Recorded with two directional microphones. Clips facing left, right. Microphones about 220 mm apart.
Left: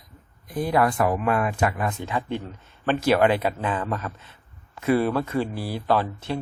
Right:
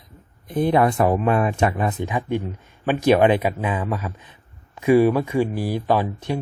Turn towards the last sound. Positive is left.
turn(degrees=-15)  # may be behind; listen again after turning